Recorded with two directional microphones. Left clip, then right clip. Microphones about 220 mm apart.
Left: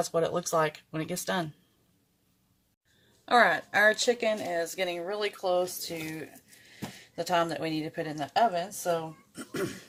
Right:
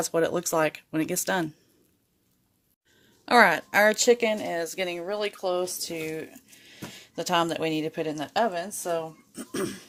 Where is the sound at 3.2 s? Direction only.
40° right (ahead or behind).